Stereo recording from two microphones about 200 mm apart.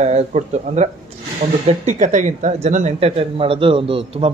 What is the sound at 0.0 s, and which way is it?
Speech, 35° right (ahead or behind).